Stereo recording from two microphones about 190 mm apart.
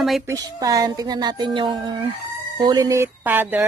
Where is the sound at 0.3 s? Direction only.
20° right (ahead or behind).